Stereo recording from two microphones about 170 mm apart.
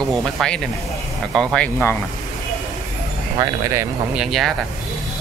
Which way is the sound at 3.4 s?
15° right (ahead or behind).